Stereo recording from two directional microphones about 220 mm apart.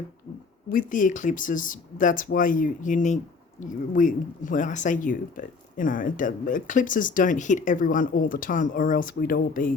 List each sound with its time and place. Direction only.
0.7 s speech: 35° left (ahead or behind)